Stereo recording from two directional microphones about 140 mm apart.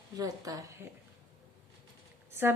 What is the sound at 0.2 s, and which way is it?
Speech, 25° right (ahead or behind).